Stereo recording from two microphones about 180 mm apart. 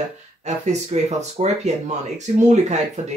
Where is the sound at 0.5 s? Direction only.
40° right (ahead or behind).